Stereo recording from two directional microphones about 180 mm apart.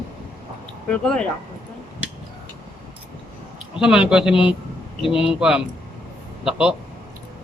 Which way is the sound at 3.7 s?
5° right (ahead or behind).